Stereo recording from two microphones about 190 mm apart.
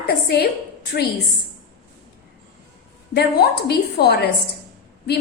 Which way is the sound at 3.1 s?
60° left (ahead or behind).